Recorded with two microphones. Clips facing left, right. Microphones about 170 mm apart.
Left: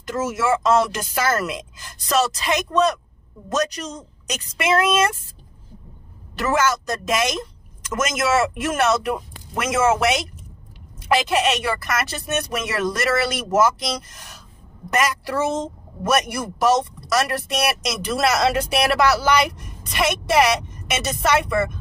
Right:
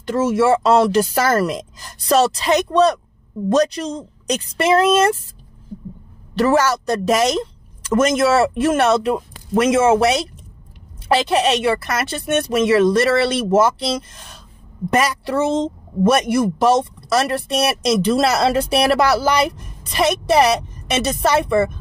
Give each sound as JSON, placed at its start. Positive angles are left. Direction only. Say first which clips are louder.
{"t": 0.0, "sound": "a woman's voice", "louder": "right 7 dB", "side_deg": -30}
{"t": 6.3, "sound": "a woman's voice", "louder": "right 5 dB", "side_deg": -35}